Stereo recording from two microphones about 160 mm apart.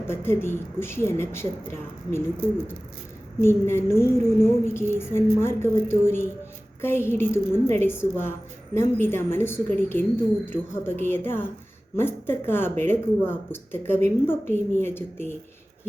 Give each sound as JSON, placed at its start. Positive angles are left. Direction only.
{"t": 0.1, "sound": "a woman's voice", "side_deg": 15}
{"t": 3.4, "sound": "a woman's voice", "side_deg": 15}